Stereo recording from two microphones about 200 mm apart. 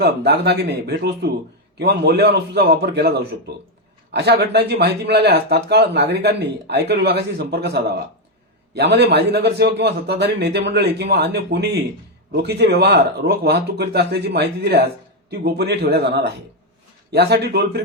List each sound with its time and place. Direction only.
0.0 s speech: 55° right (ahead or behind)